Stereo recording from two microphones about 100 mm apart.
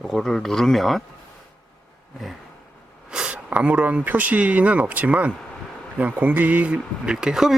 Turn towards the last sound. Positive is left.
turn(degrees=-5)  # may be behind; listen again after turning